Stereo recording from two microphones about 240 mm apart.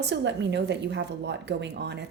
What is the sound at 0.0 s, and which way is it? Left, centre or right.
Speech, right.